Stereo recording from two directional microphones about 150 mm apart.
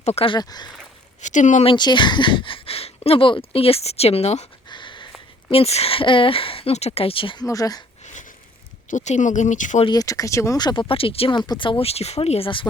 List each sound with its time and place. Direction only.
0.0 s speech: 45° left (ahead or behind)
0.3 s speech: 25° left (ahead or behind)
1.2 s speech: 55° left (ahead or behind)
1.6 s speech: 30° left (ahead or behind)
4.7 s a sound: 30° left (ahead or behind)
5.5 s speech: 40° left (ahead or behind)
7.4 s speech: 25° left (ahead or behind)
8.0 s a sound: 55° left (ahead or behind)
8.9 s speech: 55° left (ahead or behind)
9.8 s speech: 25° left (ahead or behind)